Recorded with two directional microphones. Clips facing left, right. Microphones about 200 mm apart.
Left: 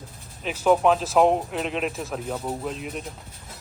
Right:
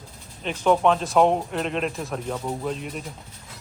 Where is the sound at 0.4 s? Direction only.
5° left (ahead or behind).